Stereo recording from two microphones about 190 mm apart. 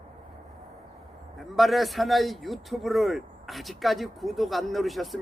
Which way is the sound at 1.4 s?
Centre (ahead or behind).